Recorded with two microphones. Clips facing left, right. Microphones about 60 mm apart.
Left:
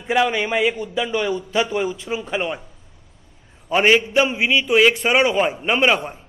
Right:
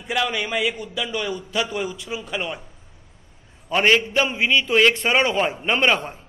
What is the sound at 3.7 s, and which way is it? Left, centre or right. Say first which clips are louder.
A man's voice: left 2 dB; centre.